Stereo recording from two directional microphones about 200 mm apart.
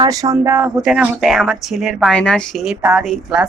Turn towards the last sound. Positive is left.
turn(degrees=-5)  # may be behind; listen again after turning